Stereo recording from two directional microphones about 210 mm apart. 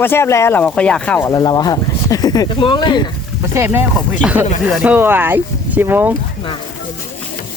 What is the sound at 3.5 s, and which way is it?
Speech, 10° right (ahead or behind).